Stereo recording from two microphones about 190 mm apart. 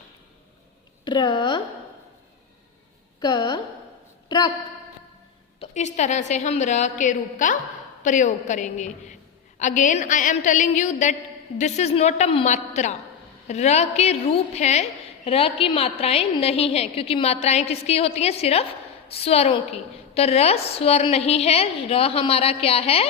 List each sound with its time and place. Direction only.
1.0 s speech: 25° left (ahead or behind)
3.2 s a woman's voice: 20° left (ahead or behind)
4.3 s a sound: 25° left (ahead or behind)
5.5 s a woman's voice: 40° left (ahead or behind)